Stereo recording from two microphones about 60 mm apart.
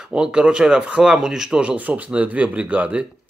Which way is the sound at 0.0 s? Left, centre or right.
Centre.